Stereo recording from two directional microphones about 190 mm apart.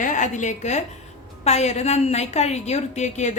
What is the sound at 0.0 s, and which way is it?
A woman's voice, 40° left (ahead or behind).